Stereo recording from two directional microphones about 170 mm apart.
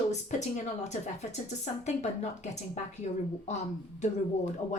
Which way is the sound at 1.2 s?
40° left (ahead or behind).